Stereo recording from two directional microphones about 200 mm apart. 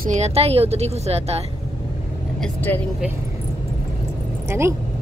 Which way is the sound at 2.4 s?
10° left (ahead or behind).